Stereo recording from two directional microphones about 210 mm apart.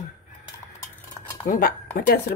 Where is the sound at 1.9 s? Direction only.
50° left (ahead or behind).